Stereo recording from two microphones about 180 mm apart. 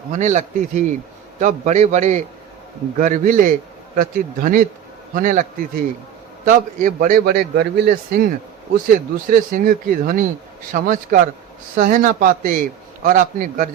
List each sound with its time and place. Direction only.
0.1 s a man's voice: 45° right (ahead or behind)